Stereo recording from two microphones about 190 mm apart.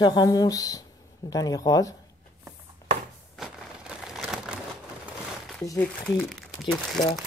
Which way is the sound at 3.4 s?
5° right (ahead or behind).